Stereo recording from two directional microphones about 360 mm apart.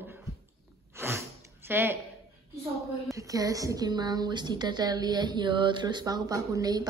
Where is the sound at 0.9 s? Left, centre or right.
Centre.